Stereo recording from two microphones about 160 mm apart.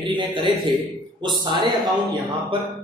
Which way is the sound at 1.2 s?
30° right (ahead or behind).